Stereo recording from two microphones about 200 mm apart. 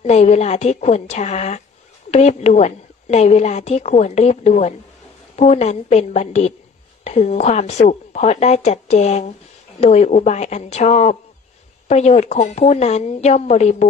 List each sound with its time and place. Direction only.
0.0 s a woman's voice: 35° left (ahead or behind)